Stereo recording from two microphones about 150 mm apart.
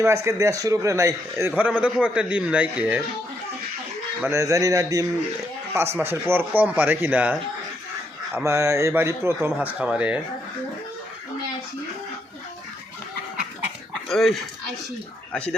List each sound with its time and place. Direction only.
0.0 s a man's voice: 20° right (ahead or behind)
4.2 s a man's voice: 20° right (ahead or behind)
8.4 s a man's voice: 20° right (ahead or behind)
14.1 s speech: centre (ahead or behind)